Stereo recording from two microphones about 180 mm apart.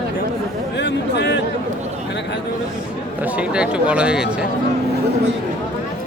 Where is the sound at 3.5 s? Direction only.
5° right (ahead or behind).